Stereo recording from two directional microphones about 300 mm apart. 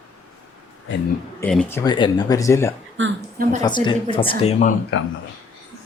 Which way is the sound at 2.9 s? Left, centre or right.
Right.